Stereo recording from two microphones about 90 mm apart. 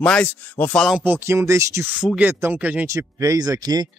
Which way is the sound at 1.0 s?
25° right (ahead or behind).